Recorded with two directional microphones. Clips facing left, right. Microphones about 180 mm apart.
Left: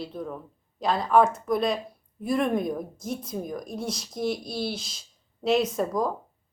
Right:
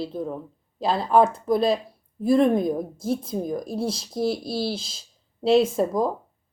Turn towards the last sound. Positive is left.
turn(degrees=-25)  # may be behind; listen again after turning